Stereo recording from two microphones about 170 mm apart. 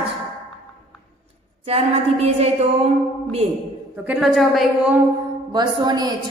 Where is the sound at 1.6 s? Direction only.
35° right (ahead or behind).